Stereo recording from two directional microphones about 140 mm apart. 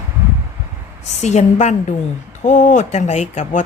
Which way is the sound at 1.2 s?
55° left (ahead or behind).